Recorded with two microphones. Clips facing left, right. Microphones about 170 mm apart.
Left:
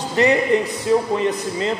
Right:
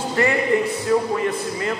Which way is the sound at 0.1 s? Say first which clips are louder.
Left 3 dB; 20° left (ahead or behind).